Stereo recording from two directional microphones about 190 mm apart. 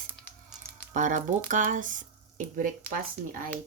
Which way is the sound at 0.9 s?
40° right (ahead or behind).